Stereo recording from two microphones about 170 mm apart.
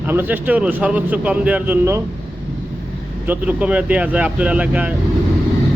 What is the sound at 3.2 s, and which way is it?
A man's voice, 10° right (ahead or behind).